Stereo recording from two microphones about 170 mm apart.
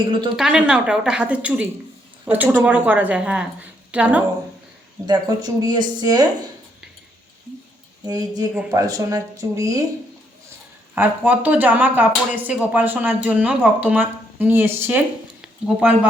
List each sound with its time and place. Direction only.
0.0 s speech: 30° right (ahead or behind)
0.3 s a woman's voice: 5° right (ahead or behind)
5.0 s speech: 25° right (ahead or behind)
8.0 s speech: 20° right (ahead or behind)
10.9 s speech: 10° right (ahead or behind)